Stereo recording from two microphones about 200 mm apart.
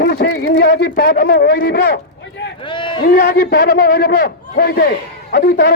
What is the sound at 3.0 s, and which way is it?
A man's voice, 50° left (ahead or behind).